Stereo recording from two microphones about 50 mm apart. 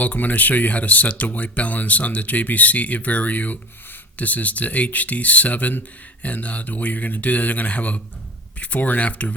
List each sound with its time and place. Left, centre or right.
0.0 s speech: left